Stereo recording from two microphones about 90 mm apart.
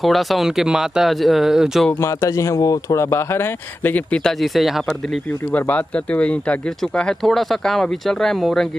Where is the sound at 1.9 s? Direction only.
30° left (ahead or behind); by 5.2 s 5° left (ahead or behind).